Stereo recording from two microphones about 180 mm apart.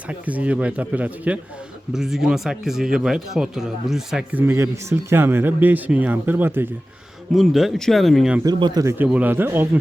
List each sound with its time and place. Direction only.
0.1 s a man's voice: 5° right (ahead or behind)
7.3 s speech: centre (ahead or behind)
8.4 s a man's voice: 25° right (ahead or behind)